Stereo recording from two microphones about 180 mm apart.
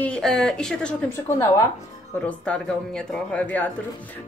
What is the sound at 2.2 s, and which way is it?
A woman's voice, 5° left (ahead or behind).